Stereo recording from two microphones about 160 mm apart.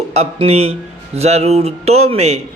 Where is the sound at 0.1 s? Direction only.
40° right (ahead or behind).